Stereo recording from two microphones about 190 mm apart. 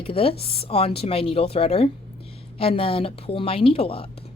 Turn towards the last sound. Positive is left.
turn(degrees=30)  # may be behind; listen again after turning